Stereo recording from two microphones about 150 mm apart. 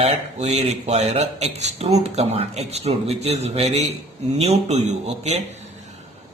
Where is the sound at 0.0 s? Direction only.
45° right (ahead or behind).